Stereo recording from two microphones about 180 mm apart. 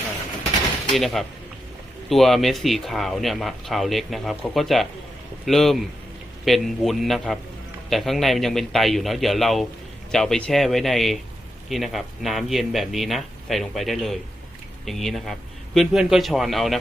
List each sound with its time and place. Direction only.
0.9 s speech: centre (ahead or behind)